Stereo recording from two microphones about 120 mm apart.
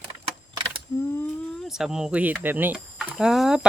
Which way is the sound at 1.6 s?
5° right (ahead or behind).